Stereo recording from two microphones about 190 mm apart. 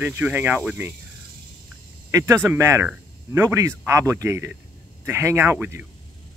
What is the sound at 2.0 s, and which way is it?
Speech, 15° right (ahead or behind).